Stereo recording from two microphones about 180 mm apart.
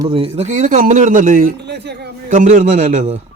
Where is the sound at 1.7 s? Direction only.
65° right (ahead or behind).